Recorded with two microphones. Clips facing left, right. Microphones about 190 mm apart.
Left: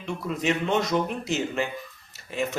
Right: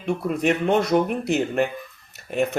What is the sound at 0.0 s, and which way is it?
Speech, 55° right (ahead or behind).